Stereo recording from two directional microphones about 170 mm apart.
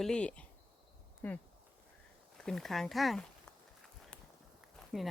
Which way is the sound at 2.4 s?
Centre (ahead or behind).